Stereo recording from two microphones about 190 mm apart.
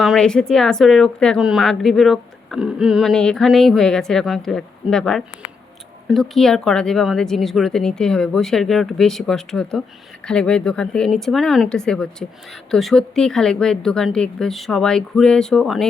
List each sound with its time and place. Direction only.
0.0 s speech: centre (ahead or behind)